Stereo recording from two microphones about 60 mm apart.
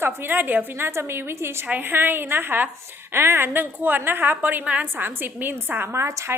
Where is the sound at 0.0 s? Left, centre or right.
Right.